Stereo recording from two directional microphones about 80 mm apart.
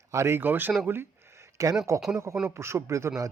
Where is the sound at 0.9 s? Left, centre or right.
Right.